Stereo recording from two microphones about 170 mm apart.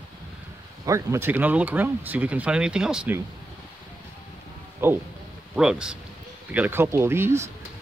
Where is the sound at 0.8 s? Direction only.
15° right (ahead or behind).